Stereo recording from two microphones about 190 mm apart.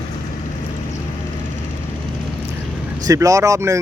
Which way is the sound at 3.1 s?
15° right (ahead or behind).